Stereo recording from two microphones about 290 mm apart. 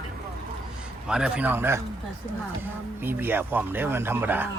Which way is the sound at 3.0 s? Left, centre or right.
Centre.